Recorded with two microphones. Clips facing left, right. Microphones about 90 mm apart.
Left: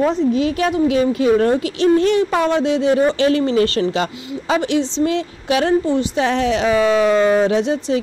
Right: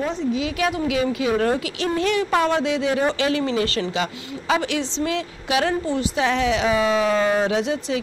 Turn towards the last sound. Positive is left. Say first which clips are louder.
# left 5 dB
turn(degrees=35)  # may be behind; listen again after turning